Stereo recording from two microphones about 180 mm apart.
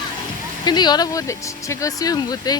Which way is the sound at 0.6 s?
25° left (ahead or behind).